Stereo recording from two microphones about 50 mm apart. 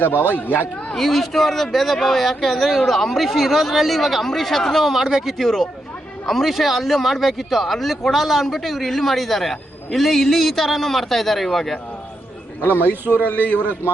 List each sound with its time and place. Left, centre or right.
0.0 s speech: left
0.9 s speech: centre
12.6 s speech: left